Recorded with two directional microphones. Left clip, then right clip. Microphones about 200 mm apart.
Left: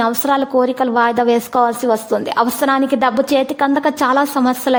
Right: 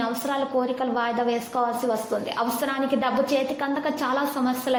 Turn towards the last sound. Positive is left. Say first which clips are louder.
# left 9 dB
turn(degrees=45)  # may be behind; listen again after turning